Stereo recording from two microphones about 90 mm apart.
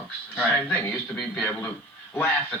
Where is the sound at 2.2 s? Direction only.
20° left (ahead or behind).